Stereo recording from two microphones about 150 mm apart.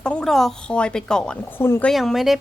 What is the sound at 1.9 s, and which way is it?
Speech, centre (ahead or behind).